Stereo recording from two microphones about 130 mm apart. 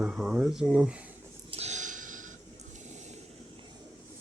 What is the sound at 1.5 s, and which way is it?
Snort, 55° right (ahead or behind).